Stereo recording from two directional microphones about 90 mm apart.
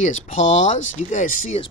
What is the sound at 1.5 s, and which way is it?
Speech, 90° left.